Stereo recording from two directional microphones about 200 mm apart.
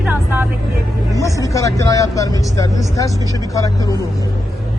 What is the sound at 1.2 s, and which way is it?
Vehicle, 15° left (ahead or behind).